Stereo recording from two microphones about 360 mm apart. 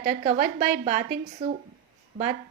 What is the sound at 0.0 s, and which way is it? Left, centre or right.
A woman's voice, centre.